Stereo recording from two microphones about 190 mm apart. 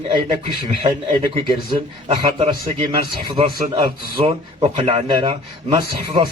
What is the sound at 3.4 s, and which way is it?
Speech, 30° right (ahead or behind).